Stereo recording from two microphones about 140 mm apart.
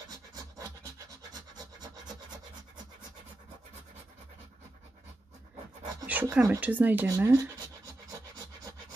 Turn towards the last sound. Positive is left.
turn(degrees=-25)  # may be behind; listen again after turning